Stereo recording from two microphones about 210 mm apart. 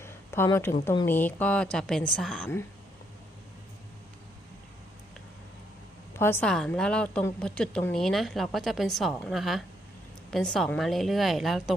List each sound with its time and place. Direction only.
0.0 s a sound: 10° left (ahead or behind)
0.9 s a woman's voice: 10° left (ahead or behind)
6.1 s a woman's voice: 10° left (ahead or behind)